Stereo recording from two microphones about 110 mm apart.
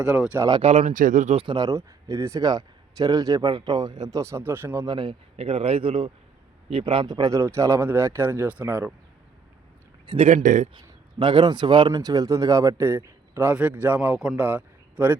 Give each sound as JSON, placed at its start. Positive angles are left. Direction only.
{"t": 0.0, "sound": "speech", "side_deg": -10}
{"t": 0.6, "sound": "speech", "side_deg": -75}
{"t": 1.5, "sound": "a man's voice", "side_deg": -40}
{"t": 1.7, "sound": "speech", "side_deg": -30}
{"t": 4.2, "sound": "speech", "side_deg": -25}
{"t": 4.9, "sound": "a man's voice", "side_deg": -45}
{"t": 5.4, "sound": "a man's voice", "side_deg": -60}
{"t": 7.1, "sound": "speech", "side_deg": -35}
{"t": 10.2, "sound": "a man's voice", "side_deg": -90}
{"t": 10.8, "sound": "speech", "side_deg": -45}